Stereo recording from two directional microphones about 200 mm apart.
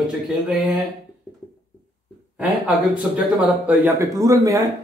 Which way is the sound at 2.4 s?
5° right (ahead or behind).